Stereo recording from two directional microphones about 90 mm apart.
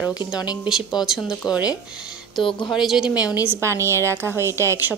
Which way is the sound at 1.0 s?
5° right (ahead or behind).